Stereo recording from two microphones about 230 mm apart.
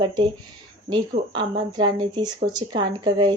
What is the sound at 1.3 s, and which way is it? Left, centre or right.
Speech, centre.